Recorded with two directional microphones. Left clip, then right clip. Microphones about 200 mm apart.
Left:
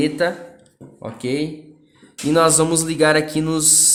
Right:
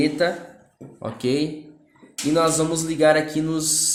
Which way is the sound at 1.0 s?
Centre (ahead or behind).